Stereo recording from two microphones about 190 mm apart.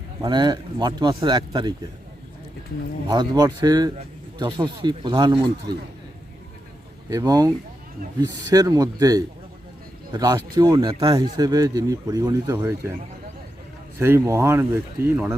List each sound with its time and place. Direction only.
0.2 s speech: 25° right (ahead or behind)
3.1 s speech: 20° right (ahead or behind)
7.1 s speech: 20° right (ahead or behind)
8.5 s speech: 20° right (ahead or behind)
14.0 s speech: 15° right (ahead or behind)